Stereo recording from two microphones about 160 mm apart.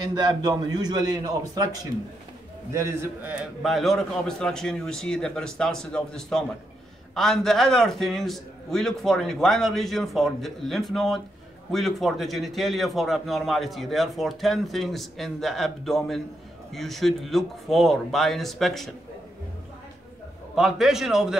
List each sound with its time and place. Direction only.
0.1 s a man's voice: 25° right (ahead or behind)
3.6 s a man's voice: centre (ahead or behind)
20.5 s a man's voice: 5° right (ahead or behind)